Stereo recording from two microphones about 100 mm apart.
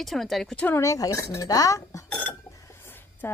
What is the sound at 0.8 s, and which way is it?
Speech, 35° left (ahead or behind).